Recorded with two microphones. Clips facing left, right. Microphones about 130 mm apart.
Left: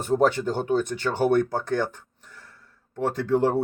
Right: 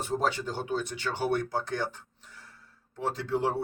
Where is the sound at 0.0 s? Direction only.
50° left (ahead or behind).